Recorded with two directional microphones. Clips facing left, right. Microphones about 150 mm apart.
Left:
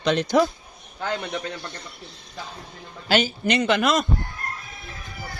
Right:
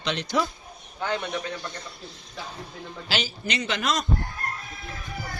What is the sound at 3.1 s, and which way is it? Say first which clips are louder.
Speech: left 9 dB; 55° left (ahead or behind).